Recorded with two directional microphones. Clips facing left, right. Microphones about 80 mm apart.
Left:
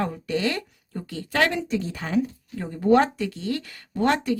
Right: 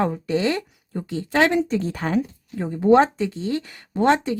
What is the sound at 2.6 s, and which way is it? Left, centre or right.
Speech, right.